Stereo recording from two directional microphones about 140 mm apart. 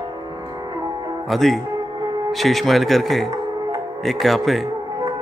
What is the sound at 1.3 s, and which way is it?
Speech, centre (ahead or behind).